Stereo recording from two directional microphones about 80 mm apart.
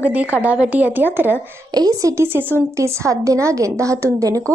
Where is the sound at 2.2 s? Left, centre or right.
Right.